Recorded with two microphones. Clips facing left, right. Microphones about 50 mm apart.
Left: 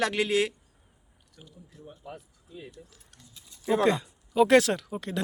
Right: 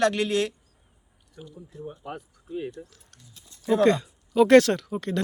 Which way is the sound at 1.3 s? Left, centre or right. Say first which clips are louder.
Right 9 dB; right.